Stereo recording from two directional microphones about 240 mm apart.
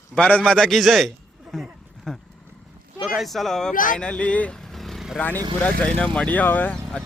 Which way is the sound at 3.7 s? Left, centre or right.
Left.